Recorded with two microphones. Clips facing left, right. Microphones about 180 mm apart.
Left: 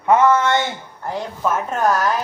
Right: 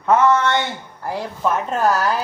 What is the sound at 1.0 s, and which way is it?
A woman's voice, centre (ahead or behind).